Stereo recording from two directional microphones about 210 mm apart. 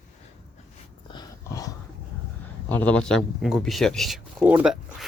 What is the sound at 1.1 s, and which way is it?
Dog, 15° left (ahead or behind).